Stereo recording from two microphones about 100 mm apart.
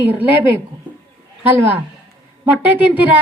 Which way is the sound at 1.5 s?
15° right (ahead or behind).